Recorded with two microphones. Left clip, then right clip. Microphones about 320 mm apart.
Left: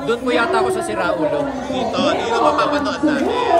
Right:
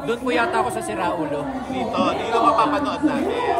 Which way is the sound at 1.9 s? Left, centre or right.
Centre.